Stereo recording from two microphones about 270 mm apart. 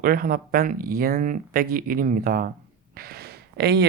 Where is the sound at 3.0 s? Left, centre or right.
Right.